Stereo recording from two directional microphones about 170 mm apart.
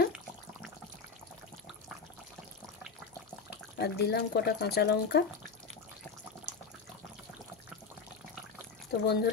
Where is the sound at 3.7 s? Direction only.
70° left (ahead or behind).